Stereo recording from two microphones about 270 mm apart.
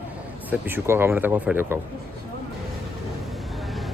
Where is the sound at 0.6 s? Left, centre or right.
Centre.